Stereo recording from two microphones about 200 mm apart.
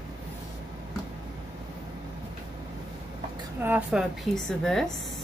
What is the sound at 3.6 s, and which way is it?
Speech, 5° right (ahead or behind).